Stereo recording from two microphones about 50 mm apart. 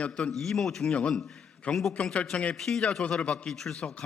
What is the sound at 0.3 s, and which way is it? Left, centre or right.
A man's voice, centre.